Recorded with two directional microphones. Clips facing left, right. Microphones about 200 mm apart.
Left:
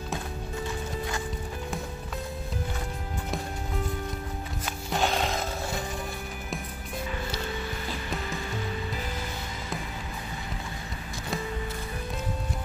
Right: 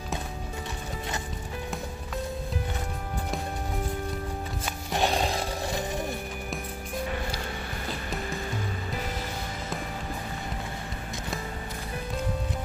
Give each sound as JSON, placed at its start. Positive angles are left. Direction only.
{"t": 5.0, "sound": "music", "side_deg": -35}